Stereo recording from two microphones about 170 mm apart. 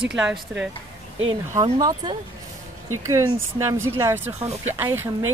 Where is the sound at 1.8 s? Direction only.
25° right (ahead or behind).